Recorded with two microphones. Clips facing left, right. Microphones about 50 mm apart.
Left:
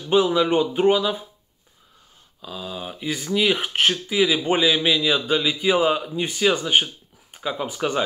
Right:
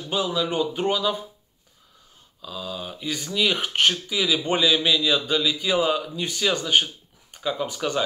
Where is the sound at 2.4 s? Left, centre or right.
Centre.